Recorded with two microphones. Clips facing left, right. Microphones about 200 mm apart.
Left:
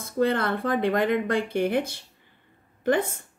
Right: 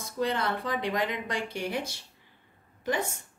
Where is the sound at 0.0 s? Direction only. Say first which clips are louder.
Left 6 dB; 55° left (ahead or behind).